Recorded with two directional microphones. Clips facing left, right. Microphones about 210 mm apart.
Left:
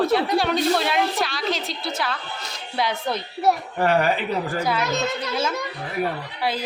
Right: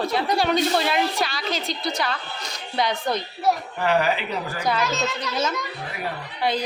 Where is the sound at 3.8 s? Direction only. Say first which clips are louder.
Left 2 dB; 50° left (ahead or behind).